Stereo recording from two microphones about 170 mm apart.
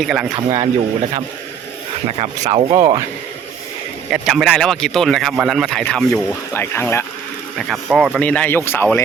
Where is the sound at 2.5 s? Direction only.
25° right (ahead or behind).